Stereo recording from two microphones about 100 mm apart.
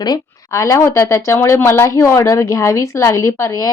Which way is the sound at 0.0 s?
35° left (ahead or behind).